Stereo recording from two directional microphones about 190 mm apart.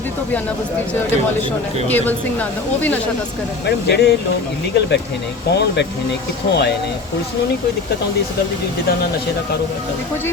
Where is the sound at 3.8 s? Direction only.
60° left (ahead or behind).